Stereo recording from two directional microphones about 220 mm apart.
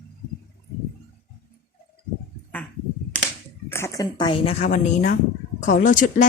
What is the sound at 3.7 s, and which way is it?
Speech, 10° left (ahead or behind).